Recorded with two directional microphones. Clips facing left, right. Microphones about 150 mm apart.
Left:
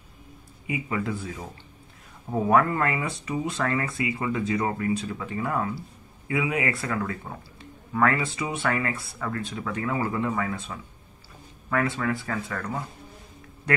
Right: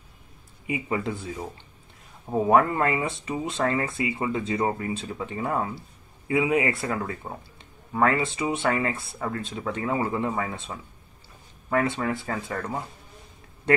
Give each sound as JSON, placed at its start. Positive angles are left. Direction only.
{"t": 0.7, "sound": "speech", "side_deg": -25}
{"t": 2.4, "sound": "speech", "side_deg": -25}